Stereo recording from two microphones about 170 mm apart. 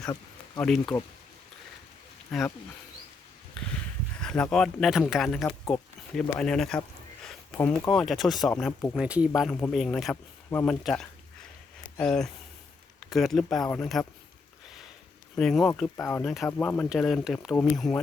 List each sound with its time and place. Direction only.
0.6 s speech: centre (ahead or behind)
3.6 s a sound: 5° left (ahead or behind)
4.5 s speech: centre (ahead or behind)
15.4 s speech: centre (ahead or behind)
16.0 s speech: 15° left (ahead or behind)
16.2 s speech: centre (ahead or behind)
16.9 s speech: centre (ahead or behind)